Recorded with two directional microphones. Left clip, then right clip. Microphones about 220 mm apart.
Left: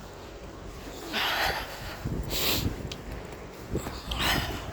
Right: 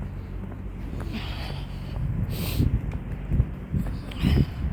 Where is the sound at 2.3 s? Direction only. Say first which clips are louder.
Left 5 dB; 30° left (ahead or behind).